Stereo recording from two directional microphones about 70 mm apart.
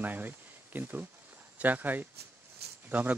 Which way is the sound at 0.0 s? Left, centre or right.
Right.